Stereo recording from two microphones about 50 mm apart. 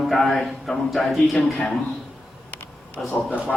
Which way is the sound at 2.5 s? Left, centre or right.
Left.